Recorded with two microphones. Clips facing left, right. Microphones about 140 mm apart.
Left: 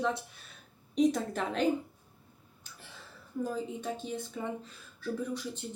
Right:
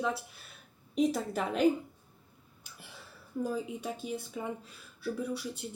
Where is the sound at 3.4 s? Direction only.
10° right (ahead or behind).